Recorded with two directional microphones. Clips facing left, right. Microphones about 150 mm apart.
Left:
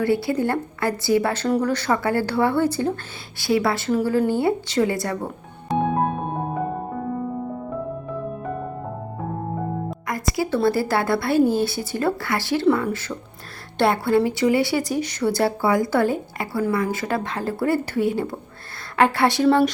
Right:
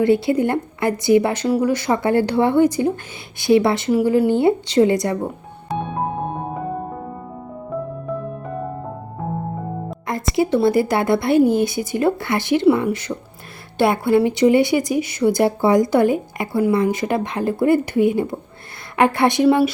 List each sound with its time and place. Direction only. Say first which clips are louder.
0.0 s speech: right 5 dB; 20° right (ahead or behind)
10.1 s speech: right 5 dB; 25° right (ahead or behind)